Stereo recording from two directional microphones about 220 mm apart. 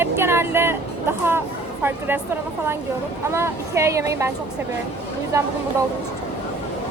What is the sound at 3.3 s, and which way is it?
Speech, 10° right (ahead or behind).